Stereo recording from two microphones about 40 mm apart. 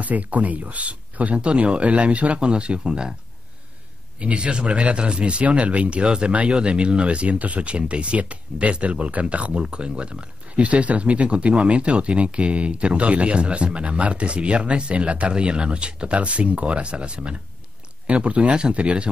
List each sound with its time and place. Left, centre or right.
0.0 s speech: right; by 3.2 s centre
4.2 s speech: right
6.0 s speech: right